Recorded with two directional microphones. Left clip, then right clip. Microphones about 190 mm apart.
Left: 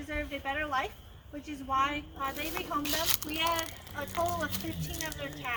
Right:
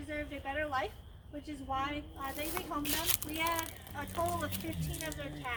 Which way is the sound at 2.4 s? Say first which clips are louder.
Left 1 dB; 30° right (ahead or behind).